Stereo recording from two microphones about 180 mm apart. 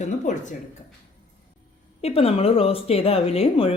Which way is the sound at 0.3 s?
45° left (ahead or behind).